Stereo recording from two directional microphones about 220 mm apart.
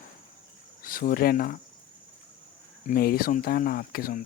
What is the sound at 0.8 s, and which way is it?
Speech, 40° left (ahead or behind).